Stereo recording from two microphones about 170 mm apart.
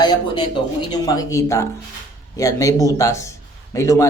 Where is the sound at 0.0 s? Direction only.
25° left (ahead or behind).